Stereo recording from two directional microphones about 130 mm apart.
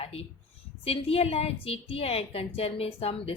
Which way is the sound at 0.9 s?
50° left (ahead or behind).